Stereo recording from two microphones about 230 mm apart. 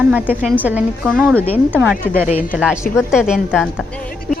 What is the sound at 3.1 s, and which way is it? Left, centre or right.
Speech, centre.